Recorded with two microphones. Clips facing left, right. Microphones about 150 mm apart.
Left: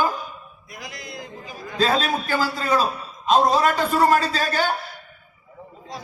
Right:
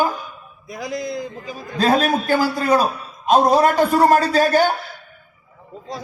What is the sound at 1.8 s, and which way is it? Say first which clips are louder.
A man's voice: right 4 dB; 45° right (ahead or behind).